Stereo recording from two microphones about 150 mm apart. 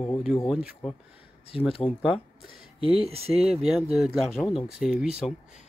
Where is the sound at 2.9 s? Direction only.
40° right (ahead or behind).